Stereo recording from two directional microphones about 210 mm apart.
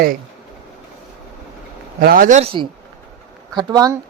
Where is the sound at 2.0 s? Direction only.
45° right (ahead or behind).